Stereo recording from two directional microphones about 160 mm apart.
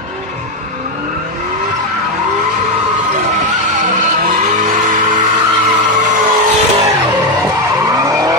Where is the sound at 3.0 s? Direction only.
50° right (ahead or behind).